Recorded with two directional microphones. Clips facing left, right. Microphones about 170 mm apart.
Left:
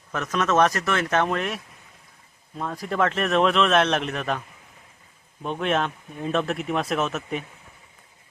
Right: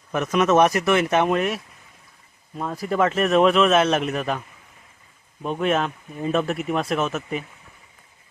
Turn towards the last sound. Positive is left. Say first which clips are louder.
# right 1 dB
turn(degrees=0)  # may be behind; listen again after turning